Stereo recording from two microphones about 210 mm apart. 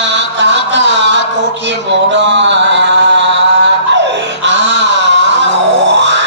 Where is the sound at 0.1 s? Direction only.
60° right (ahead or behind).